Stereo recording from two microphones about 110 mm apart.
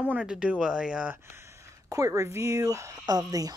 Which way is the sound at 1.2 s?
25° right (ahead or behind).